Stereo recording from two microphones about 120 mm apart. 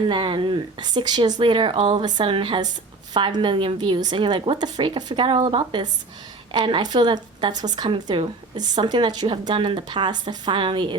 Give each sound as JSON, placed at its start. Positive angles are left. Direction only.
{"t": 0.1, "sound": "a woman's voice", "side_deg": -45}